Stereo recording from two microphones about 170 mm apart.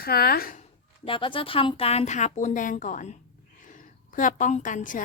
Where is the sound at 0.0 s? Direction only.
65° left (ahead or behind).